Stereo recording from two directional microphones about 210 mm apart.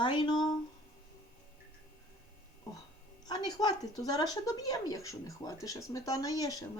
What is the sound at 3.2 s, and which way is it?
Speech, 20° left (ahead or behind).